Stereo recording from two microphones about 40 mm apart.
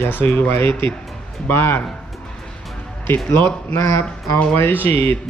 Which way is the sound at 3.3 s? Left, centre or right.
Left.